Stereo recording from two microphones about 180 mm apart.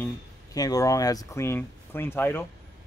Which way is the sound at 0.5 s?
20° left (ahead or behind).